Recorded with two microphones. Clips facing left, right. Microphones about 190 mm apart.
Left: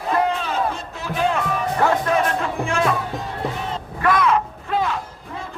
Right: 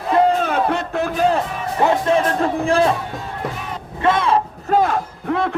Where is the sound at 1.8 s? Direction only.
25° right (ahead or behind).